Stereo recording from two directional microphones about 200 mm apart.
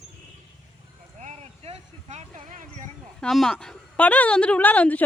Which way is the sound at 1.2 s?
35° right (ahead or behind).